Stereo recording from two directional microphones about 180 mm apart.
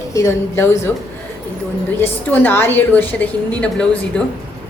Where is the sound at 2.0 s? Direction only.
10° left (ahead or behind).